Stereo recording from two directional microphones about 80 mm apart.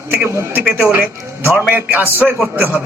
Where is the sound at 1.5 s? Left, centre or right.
Centre.